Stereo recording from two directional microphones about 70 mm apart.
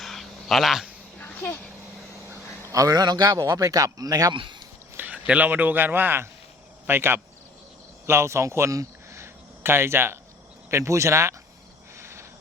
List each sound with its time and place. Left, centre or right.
0.0 s a sound: centre
1.2 s dog: left
2.7 s speech: right
4.9 s a sound: right
5.5 s speech: right
11.9 s cricket: right